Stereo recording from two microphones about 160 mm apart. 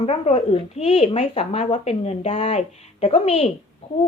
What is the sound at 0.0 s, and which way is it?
Speech, 40° left (ahead or behind).